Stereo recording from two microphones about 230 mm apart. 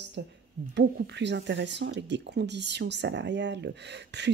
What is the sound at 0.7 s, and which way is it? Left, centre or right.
Speech, right.